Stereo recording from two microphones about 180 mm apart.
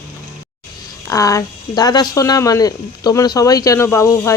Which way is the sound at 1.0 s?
20° left (ahead or behind).